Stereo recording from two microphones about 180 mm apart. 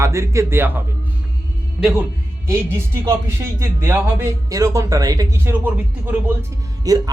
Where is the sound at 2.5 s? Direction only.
15° right (ahead or behind).